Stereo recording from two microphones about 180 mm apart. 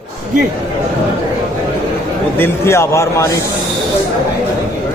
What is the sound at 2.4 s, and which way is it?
Speech, 15° left (ahead or behind).